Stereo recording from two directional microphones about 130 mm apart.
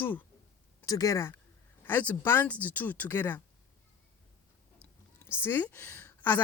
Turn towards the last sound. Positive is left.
turn(degrees=15)  # may be behind; listen again after turning